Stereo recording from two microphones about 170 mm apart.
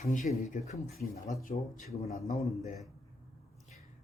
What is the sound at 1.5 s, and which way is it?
Speech, 40° left (ahead or behind).